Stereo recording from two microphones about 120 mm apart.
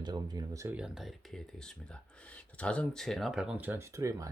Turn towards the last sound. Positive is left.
turn(degrees=-25)  # may be behind; listen again after turning